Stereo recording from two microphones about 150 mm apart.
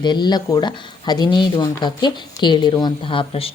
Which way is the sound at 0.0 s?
30° left (ahead or behind).